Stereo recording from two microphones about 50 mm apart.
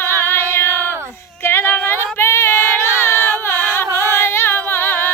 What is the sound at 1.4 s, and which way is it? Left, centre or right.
Female singing, left.